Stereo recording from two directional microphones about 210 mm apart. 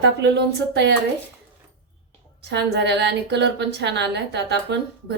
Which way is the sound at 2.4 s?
55° right (ahead or behind).